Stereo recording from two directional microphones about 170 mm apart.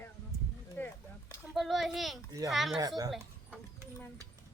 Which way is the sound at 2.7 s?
25° right (ahead or behind).